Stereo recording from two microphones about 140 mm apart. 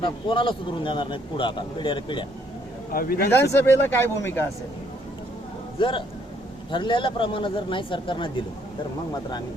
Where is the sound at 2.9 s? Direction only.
90° left.